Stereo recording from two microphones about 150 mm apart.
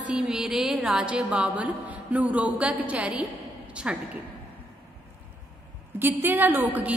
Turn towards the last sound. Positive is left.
turn(degrees=-10)  # may be behind; listen again after turning